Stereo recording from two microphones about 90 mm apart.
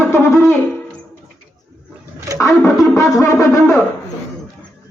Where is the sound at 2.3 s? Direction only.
40° right (ahead or behind).